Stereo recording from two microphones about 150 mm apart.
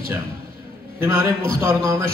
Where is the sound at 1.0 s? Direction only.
20° right (ahead or behind).